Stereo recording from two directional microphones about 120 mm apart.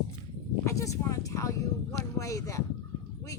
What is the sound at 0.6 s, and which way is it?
Speech, 25° left (ahead or behind).